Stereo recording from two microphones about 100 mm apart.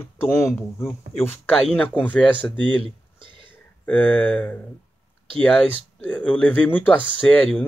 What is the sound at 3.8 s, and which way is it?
Speech, 15° left (ahead or behind).